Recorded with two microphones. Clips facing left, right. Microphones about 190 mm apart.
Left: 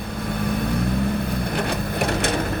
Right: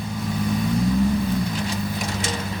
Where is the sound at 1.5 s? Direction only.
60° left (ahead or behind).